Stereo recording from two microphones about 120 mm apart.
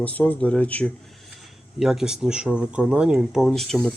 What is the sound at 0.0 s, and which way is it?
Speech, 15° left (ahead or behind).